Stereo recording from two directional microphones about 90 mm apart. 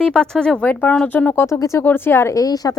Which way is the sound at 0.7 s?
20° left (ahead or behind).